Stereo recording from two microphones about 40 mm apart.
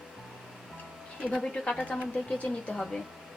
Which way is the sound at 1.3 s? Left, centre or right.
Centre.